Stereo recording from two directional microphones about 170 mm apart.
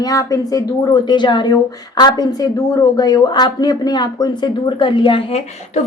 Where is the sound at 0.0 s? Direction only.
20° left (ahead or behind).